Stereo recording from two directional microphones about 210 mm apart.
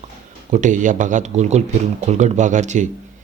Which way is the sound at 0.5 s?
35° right (ahead or behind).